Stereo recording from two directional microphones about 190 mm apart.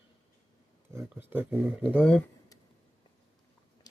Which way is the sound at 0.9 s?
10° right (ahead or behind).